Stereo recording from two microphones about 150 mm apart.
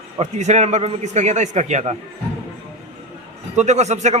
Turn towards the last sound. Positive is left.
turn(degrees=-50)  # may be behind; listen again after turning